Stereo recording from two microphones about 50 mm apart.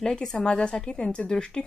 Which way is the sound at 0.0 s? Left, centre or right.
Centre.